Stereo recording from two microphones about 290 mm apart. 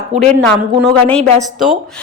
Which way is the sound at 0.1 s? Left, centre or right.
Right.